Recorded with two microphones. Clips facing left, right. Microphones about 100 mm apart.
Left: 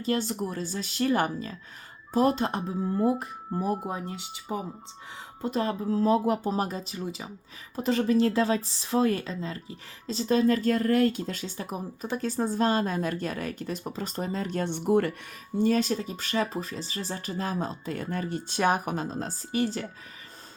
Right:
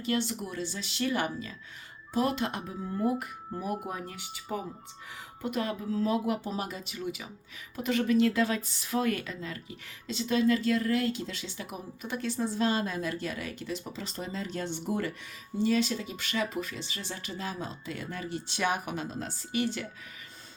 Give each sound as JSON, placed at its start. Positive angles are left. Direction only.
{"t": 0.0, "sound": "speech", "side_deg": 35}
{"t": 15.5, "sound": "speech", "side_deg": 45}